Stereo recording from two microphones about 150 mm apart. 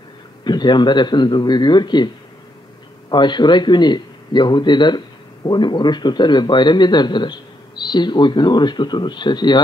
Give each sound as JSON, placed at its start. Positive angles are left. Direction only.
{"t": 0.4, "sound": "a man's voice", "side_deg": 30}
{"t": 3.1, "sound": "a man's voice", "side_deg": 30}